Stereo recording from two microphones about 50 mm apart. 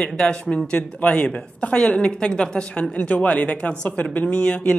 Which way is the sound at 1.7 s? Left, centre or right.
Centre.